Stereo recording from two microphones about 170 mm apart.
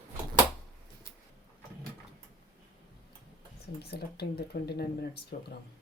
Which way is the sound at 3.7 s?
70° left (ahead or behind).